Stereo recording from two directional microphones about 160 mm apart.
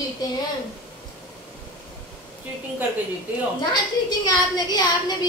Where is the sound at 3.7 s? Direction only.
25° left (ahead or behind).